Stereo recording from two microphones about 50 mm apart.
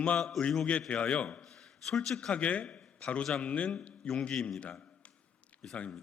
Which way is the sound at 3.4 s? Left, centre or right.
Left.